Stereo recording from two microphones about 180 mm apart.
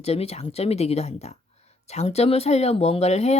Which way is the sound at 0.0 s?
35° left (ahead or behind).